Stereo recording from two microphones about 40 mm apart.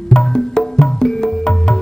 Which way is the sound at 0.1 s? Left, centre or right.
Centre.